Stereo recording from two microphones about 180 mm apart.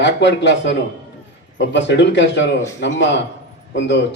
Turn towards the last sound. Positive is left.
turn(degrees=75)  # may be behind; listen again after turning